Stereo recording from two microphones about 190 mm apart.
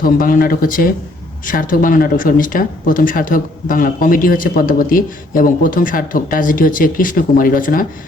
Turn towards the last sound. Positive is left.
turn(degrees=45)  # may be behind; listen again after turning